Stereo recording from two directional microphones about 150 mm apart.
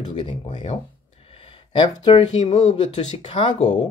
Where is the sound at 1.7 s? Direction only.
35° left (ahead or behind).